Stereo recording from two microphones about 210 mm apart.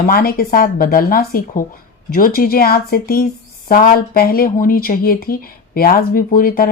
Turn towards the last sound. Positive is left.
turn(degrees=45)  # may be behind; listen again after turning